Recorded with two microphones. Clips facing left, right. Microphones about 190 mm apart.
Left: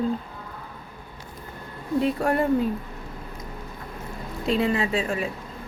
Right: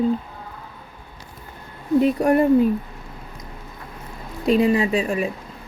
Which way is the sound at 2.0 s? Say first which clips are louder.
Right 5 dB; 15° right (ahead or behind).